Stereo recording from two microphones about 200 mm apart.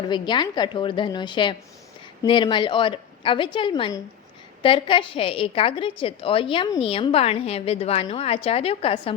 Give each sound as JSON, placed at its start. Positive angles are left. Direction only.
{"t": 0.1, "sound": "a woman's voice", "side_deg": 20}